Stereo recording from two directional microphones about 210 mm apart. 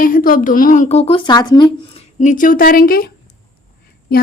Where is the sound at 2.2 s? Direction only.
35° left (ahead or behind).